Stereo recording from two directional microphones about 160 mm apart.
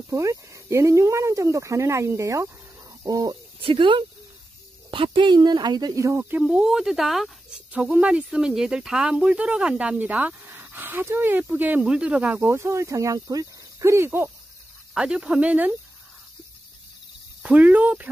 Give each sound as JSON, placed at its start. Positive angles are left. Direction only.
{"t": 0.1, "sound": "speech", "side_deg": -20}
{"t": 6.4, "sound": "speech", "side_deg": -5}
{"t": 12.4, "sound": "speech", "side_deg": -15}
{"t": 15.0, "sound": "speech", "side_deg": -5}
{"t": 17.4, "sound": "speech", "side_deg": -10}